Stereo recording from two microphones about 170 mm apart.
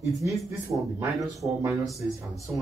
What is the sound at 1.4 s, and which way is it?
Speech, 20° right (ahead or behind).